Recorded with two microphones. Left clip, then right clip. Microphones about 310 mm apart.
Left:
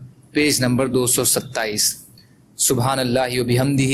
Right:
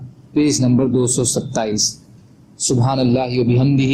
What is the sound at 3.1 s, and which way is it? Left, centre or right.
Speech, left.